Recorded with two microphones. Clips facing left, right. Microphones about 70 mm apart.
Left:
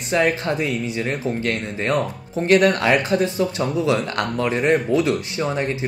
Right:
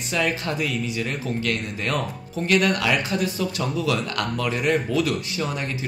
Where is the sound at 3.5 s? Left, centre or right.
Left.